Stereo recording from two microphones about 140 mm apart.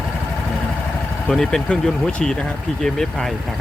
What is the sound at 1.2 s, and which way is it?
Speech, 5° left (ahead or behind).